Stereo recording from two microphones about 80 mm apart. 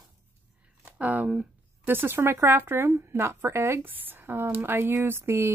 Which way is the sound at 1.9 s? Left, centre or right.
Right.